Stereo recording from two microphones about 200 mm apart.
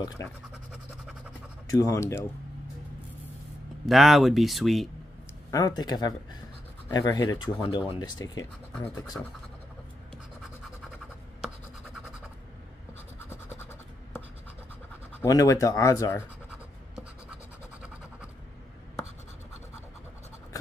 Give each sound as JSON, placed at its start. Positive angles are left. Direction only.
{"t": 0.2, "sound": "speech", "side_deg": 15}
{"t": 1.7, "sound": "speech", "side_deg": 15}
{"t": 3.8, "sound": "speech", "side_deg": 0}
{"t": 5.5, "sound": "speech", "side_deg": 20}
{"t": 13.3, "sound": "scratch", "side_deg": 10}
{"t": 15.1, "sound": "speech", "side_deg": 15}
{"t": 16.4, "sound": "scratch", "side_deg": -5}